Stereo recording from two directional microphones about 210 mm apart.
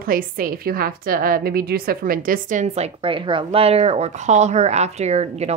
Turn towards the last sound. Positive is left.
turn(degrees=-30)  # may be behind; listen again after turning